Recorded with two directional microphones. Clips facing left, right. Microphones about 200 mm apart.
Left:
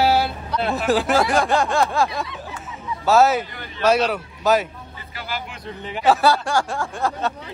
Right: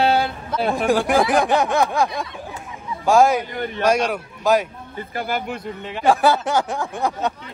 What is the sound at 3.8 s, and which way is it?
Speech, 10° right (ahead or behind).